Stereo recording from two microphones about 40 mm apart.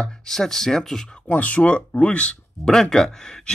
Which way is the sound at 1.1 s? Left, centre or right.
Left.